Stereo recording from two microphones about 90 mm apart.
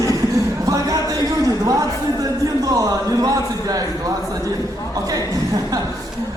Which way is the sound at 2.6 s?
40° right (ahead or behind).